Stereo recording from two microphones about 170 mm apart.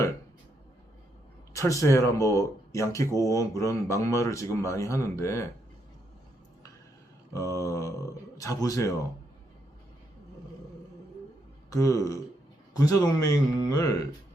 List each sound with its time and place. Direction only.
1.5 s speech: 20° left (ahead or behind)
7.3 s speech: 20° left (ahead or behind)
11.7 s speech: 20° left (ahead or behind)